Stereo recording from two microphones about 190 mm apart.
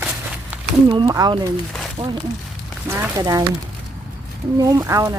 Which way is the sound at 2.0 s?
35° right (ahead or behind).